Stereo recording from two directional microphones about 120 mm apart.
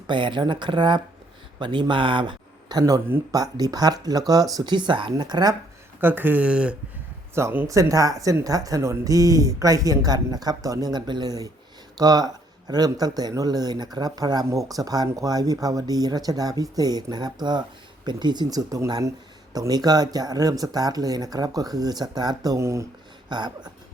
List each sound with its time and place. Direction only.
0.1 s speech: 40° right (ahead or behind)
6.0 s speech: 15° right (ahead or behind)
23.3 s speech: 35° right (ahead or behind)